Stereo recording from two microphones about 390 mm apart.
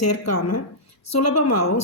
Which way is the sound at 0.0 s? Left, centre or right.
Left.